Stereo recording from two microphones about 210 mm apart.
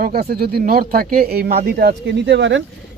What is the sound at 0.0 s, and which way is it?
Speech, 45° right (ahead or behind).